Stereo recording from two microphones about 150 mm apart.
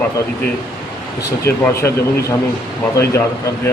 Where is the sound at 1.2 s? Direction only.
20° left (ahead or behind).